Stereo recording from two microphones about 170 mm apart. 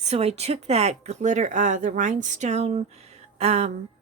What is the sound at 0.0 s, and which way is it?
A woman's voice, 40° right (ahead or behind).